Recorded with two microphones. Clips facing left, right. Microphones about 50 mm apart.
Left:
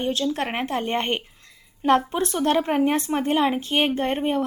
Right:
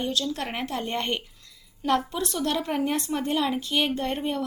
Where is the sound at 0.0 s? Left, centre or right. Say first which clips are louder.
Left 4 dB; left.